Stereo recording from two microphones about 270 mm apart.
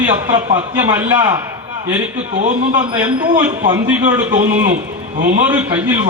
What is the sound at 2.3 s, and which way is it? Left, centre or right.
A man's voice, right.